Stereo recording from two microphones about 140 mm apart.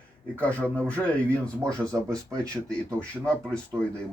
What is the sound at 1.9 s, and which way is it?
Speech, 25° right (ahead or behind).